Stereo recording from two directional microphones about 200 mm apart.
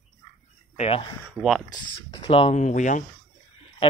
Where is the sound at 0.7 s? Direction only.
30° left (ahead or behind).